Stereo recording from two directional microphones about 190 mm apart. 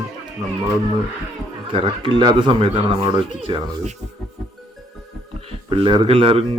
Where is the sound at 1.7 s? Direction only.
25° right (ahead or behind).